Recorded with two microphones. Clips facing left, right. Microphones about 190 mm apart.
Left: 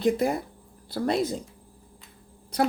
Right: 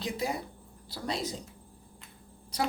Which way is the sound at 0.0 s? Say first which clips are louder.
Left 9 dB; 55° left (ahead or behind).